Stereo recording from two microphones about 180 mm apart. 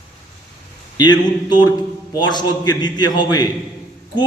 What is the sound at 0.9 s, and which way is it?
A man's voice, 25° left (ahead or behind).